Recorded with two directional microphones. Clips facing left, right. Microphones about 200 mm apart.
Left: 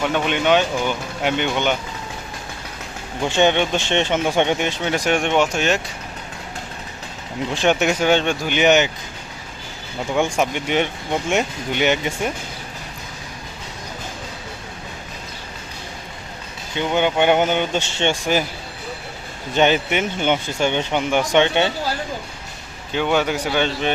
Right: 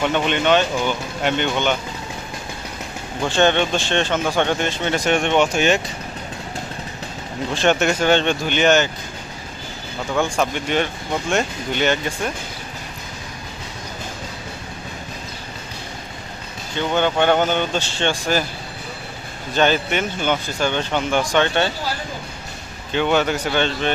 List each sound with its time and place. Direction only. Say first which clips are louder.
0.0 s speech: right 1 dB; 5° left (ahead or behind)
3.2 s speech: even; 15° left (ahead or behind)
7.5 s speech: even; 10° left (ahead or behind)
10.2 s speech: left 1 dB; 20° left (ahead or behind)
16.7 s speech: even; 15° left (ahead or behind)
19.5 s speech: left 1 dB; 20° left (ahead or behind)
22.9 s speech: right 1 dB; 10° left (ahead or behind)